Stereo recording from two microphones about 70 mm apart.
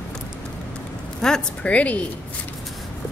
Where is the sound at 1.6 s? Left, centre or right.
Centre.